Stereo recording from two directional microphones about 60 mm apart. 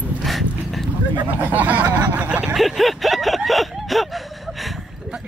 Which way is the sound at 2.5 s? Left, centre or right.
Centre.